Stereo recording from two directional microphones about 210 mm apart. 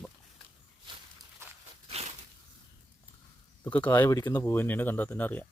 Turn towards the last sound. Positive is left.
turn(degrees=10)  # may be behind; listen again after turning